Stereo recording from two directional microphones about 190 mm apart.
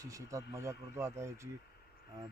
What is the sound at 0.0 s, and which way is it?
Speech, 15° right (ahead or behind).